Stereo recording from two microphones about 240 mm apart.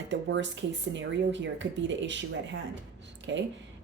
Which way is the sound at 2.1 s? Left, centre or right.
Right.